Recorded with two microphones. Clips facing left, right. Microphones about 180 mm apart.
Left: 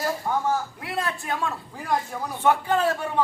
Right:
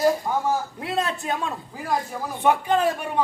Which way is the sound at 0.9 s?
20° right (ahead or behind).